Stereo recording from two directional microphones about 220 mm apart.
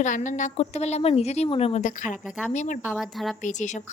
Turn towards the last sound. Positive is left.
turn(degrees=35)  # may be behind; listen again after turning